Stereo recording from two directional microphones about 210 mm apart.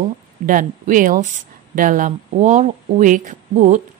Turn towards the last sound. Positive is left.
turn(degrees=-35)  # may be behind; listen again after turning